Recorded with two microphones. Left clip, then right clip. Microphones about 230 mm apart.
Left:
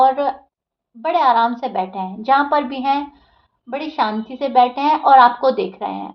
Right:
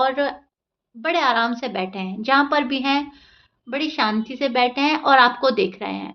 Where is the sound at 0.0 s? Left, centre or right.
Right.